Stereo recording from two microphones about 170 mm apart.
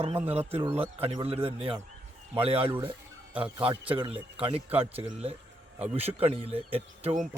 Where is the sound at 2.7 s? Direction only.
10° right (ahead or behind).